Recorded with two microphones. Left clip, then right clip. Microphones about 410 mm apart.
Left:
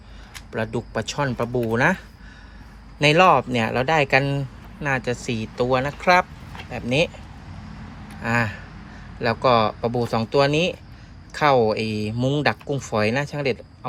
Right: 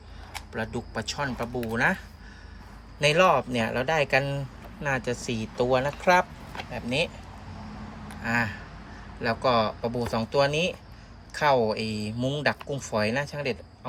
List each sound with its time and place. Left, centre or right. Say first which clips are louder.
0.5 s speech: left 7 dB; centre
3.0 s speech: left 5 dB; centre
8.2 s speech: left 4 dB; centre